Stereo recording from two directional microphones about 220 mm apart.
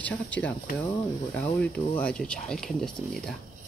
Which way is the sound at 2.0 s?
5° left (ahead or behind).